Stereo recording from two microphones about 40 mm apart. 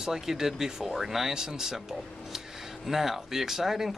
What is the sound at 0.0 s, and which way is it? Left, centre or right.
A man's voice, centre.